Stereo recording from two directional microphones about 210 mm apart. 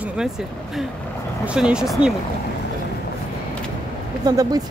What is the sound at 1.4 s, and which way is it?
Speech, 5° right (ahead or behind).